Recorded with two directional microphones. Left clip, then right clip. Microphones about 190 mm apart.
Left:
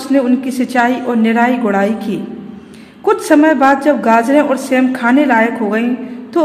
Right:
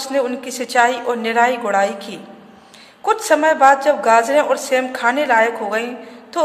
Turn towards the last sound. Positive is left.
turn(degrees=-5)  # may be behind; listen again after turning